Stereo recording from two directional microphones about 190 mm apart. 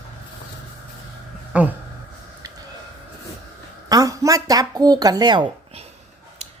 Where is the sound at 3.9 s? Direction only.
20° right (ahead or behind).